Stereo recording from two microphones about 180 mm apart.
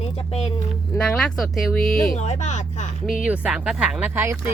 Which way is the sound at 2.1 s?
40° left (ahead or behind).